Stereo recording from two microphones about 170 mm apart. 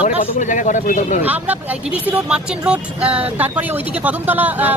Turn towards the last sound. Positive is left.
turn(degrees=-10)  # may be behind; listen again after turning